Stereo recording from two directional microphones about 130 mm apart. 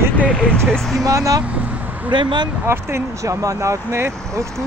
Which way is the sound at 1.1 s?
25° right (ahead or behind).